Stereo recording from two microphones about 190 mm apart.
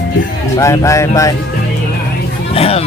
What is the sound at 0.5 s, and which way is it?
Speech, 15° left (ahead or behind).